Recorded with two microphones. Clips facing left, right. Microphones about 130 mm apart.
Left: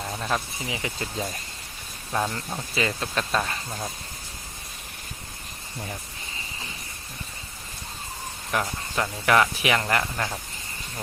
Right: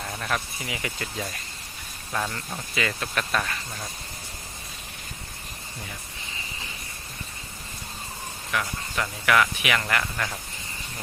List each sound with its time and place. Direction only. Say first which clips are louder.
0.0 s speech: left 2 dB; 15° left (ahead or behind)
8.5 s speech: left 2 dB; 40° left (ahead or behind); by 10.3 s 25° left (ahead or behind)